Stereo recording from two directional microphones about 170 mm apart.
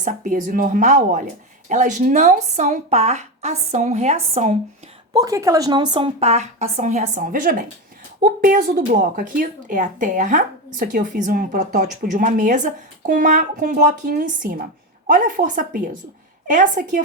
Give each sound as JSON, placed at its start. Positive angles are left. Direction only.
{"t": 0.0, "sound": "speech", "side_deg": -50}
{"t": 5.1, "sound": "a woman's voice", "side_deg": -20}